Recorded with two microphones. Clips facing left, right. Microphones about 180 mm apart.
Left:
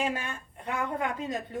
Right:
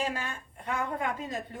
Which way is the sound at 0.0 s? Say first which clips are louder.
Left 2 dB; 25° left (ahead or behind).